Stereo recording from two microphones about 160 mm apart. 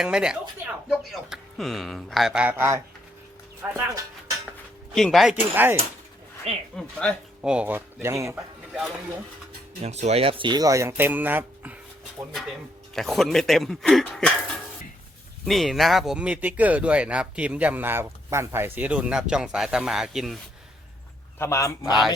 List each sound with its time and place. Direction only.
0.0 s speech: 5° right (ahead or behind)
4.9 s speech: centre (ahead or behind)
6.7 s speech: centre (ahead or behind); by 8.4 s 20° right (ahead or behind)
9.8 s speech: 40° right (ahead or behind); by 11.8 s 10° right (ahead or behind)
12.9 s speech: centre (ahead or behind)
15.4 s speech: centre (ahead or behind)
21.3 s a man's voice: 15° left (ahead or behind)